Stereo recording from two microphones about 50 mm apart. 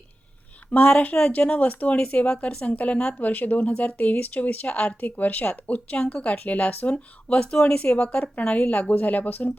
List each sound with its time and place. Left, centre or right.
0.7 s a woman's voice: left
6.9 s a woman's voice: left